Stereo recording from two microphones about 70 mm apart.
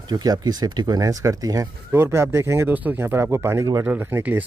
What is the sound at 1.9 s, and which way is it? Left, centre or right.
Speech, right.